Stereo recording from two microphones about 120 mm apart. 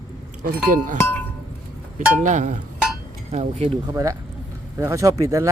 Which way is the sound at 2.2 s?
90° right.